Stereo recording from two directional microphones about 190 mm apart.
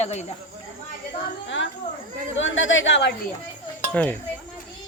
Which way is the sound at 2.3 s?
90° left.